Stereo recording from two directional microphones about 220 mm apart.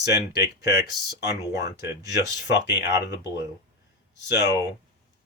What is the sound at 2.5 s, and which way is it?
Speech, 50° left (ahead or behind).